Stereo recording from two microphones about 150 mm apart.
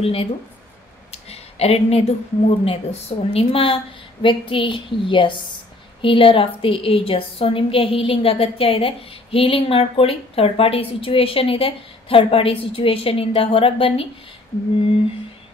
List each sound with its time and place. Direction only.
0.0 s a woman's voice: 40° left (ahead or behind)